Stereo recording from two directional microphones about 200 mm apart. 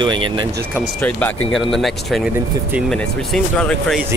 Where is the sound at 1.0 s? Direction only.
5° left (ahead or behind).